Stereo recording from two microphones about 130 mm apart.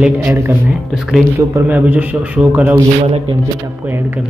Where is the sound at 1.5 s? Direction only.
10° right (ahead or behind).